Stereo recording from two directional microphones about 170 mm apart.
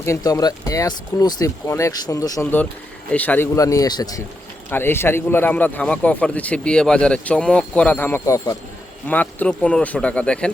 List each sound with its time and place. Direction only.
0.0 s a man's voice: 20° left (ahead or behind)